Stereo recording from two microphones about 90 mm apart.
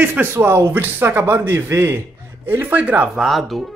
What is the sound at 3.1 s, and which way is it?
Speech, centre (ahead or behind).